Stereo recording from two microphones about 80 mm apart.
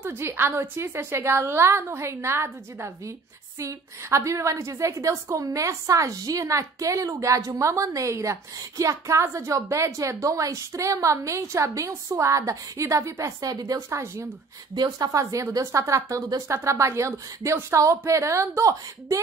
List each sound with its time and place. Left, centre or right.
0.0 s a woman's voice: right
13.7 s a woman's voice: right